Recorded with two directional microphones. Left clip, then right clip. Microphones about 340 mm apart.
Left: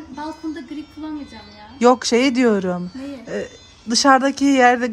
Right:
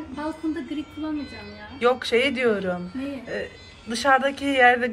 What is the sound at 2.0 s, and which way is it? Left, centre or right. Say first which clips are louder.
Speech: left 4 dB; left.